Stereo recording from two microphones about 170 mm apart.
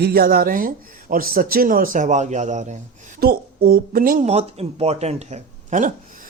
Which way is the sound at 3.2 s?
65° right (ahead or behind).